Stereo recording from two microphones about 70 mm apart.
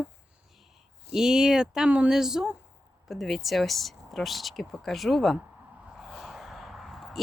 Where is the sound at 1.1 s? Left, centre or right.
Centre.